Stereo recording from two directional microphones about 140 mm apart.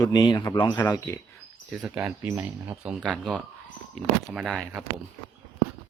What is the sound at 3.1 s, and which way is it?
Speech, 10° left (ahead or behind).